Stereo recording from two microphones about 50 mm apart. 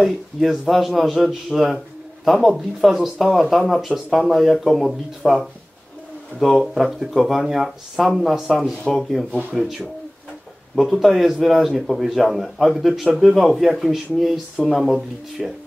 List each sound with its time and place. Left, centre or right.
0.0 s speech: centre